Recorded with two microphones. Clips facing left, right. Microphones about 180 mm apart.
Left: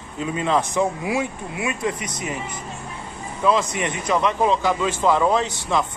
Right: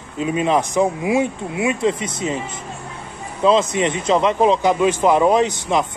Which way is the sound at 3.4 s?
20° right (ahead or behind).